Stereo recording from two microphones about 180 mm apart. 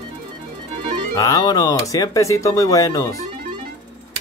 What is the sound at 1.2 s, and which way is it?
Speech, 20° left (ahead or behind).